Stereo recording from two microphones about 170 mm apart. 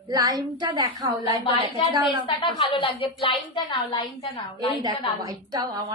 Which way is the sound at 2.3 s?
30° left (ahead or behind).